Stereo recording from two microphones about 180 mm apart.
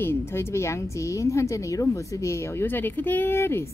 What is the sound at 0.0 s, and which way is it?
A woman's voice, 15° left (ahead or behind).